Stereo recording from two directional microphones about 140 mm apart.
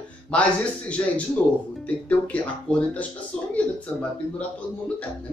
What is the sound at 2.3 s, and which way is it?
Speech, 10° left (ahead or behind).